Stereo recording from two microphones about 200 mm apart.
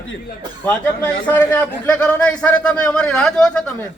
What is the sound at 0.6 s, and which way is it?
A man's voice, 10° left (ahead or behind).